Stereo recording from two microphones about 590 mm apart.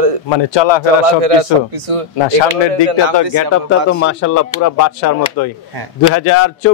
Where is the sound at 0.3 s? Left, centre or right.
Left.